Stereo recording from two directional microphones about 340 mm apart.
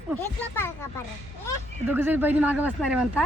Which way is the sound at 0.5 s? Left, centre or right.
Centre.